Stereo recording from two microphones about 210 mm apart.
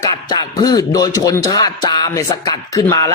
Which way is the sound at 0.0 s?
20° left (ahead or behind).